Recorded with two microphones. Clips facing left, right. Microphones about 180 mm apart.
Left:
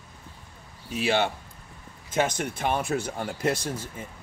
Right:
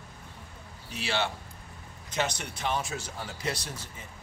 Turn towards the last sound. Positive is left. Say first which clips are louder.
# left 8 dB
turn(degrees=50)  # may be behind; listen again after turning